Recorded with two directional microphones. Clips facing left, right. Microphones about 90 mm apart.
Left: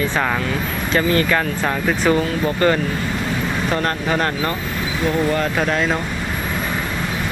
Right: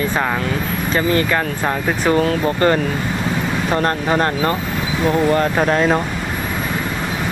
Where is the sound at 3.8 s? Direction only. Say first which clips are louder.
Right 5 dB; 30° right (ahead or behind).